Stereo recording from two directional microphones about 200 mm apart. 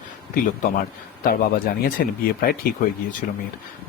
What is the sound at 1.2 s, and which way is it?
Speech, 45° left (ahead or behind).